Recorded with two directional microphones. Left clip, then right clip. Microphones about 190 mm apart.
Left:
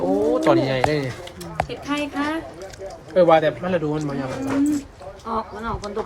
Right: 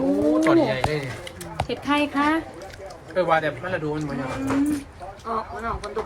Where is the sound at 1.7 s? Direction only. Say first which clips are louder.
Right 3 dB; 25° right (ahead or behind).